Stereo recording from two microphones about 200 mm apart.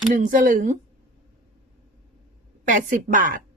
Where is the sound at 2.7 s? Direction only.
40° right (ahead or behind).